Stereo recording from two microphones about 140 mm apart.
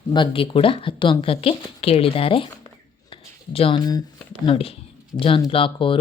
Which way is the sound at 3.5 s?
35° left (ahead or behind).